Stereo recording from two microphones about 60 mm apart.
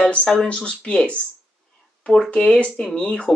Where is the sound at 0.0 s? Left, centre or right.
Centre.